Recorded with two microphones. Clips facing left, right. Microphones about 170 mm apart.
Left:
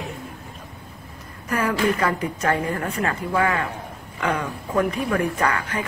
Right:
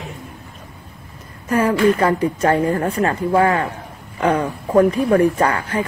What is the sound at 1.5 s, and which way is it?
A woman's voice, 30° right (ahead or behind).